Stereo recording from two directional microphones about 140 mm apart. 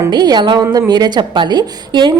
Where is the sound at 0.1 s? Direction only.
30° right (ahead or behind).